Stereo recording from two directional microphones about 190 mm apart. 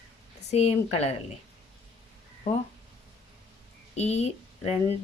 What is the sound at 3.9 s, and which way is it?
Speech, 35° left (ahead or behind).